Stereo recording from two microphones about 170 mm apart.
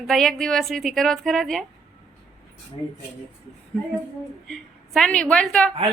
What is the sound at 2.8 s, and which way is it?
Speech, 30° left (ahead or behind).